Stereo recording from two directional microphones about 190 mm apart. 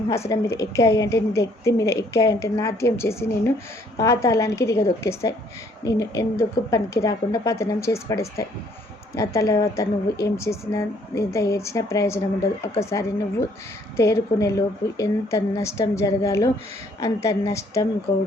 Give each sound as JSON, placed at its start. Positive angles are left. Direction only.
{"t": 0.1, "sound": "a woman's voice", "side_deg": 15}